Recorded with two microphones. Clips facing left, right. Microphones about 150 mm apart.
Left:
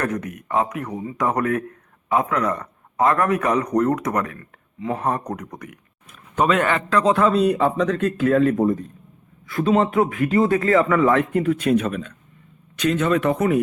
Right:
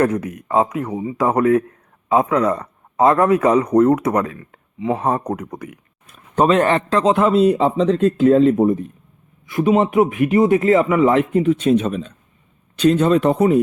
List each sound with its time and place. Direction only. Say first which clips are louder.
0.0 s speech: right 7 dB; 25° right (ahead or behind)